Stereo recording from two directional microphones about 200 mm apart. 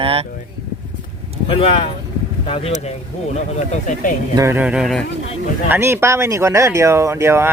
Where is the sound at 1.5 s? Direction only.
30° left (ahead or behind).